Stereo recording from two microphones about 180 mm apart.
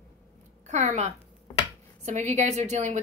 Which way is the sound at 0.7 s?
40° right (ahead or behind).